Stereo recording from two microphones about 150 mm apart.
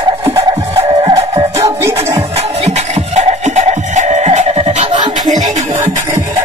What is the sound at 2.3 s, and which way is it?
Music, 45° right (ahead or behind).